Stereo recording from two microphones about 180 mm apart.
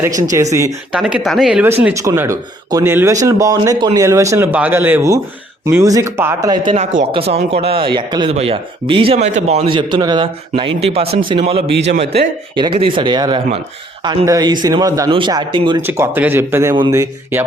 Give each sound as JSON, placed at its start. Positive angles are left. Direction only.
{"t": 0.9, "sound": "speech", "side_deg": -5}
{"t": 1.8, "sound": "speech", "side_deg": -15}
{"t": 7.1, "sound": "speech", "side_deg": -35}
{"t": 15.9, "sound": "speech", "side_deg": -10}